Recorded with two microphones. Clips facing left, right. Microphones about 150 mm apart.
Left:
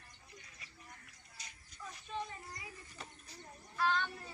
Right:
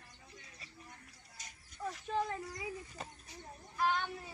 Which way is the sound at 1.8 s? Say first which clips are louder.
Right 7 dB; 90° right.